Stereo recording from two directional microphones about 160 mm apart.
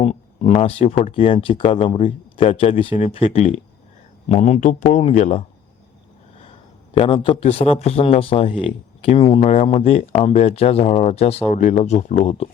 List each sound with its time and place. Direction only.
0.0 s speech: 40° left (ahead or behind)
6.9 s speech: 35° left (ahead or behind)